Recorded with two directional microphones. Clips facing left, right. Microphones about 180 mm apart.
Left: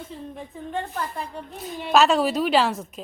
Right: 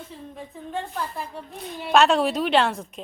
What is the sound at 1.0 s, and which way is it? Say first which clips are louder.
A woman's voice: left 1 dB; 5° right (ahead or behind).